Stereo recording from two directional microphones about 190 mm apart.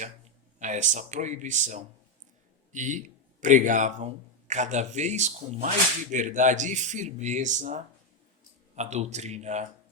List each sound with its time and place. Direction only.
0.6 s a man's voice: 40° right (ahead or behind)